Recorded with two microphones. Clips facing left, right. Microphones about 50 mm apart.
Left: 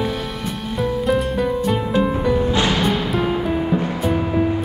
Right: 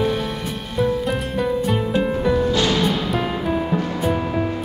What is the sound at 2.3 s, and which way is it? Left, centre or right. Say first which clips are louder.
Music: even; left.